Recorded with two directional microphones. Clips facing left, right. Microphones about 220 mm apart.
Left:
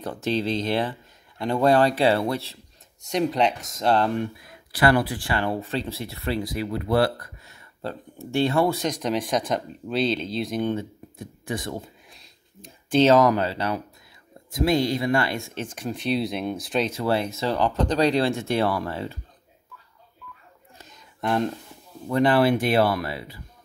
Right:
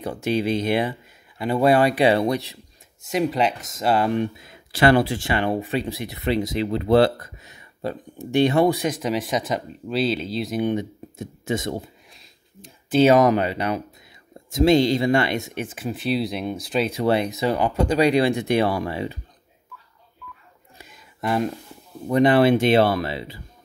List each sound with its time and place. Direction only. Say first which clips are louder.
0.0 s speech: right 2 dB; 10° right (ahead or behind)
3.1 s speech: right 1 dB; 5° right (ahead or behind)
4.1 s speech: right 4 dB; 20° right (ahead or behind)
8.8 s speech: right 1 dB; centre (ahead or behind)
10.6 s speech: right 3 dB; 15° right (ahead or behind)
12.1 s a sound: even; centre (ahead or behind)
13.1 s speech: right 2 dB; 20° right (ahead or behind)
15.6 s speech: right 2 dB; 5° right (ahead or behind)
16.9 s speech: right 3 dB; 20° right (ahead or behind)
20.7 s a sound: right 3 dB; 10° right (ahead or behind)
22.0 s speech: right 3 dB; 20° right (ahead or behind)